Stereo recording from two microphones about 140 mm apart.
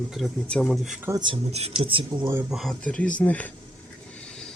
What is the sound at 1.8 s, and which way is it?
Speech, 40° right (ahead or behind).